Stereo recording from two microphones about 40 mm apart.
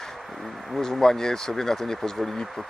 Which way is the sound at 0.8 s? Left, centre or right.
Centre.